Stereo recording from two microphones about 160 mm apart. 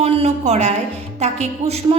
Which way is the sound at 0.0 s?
40° right (ahead or behind).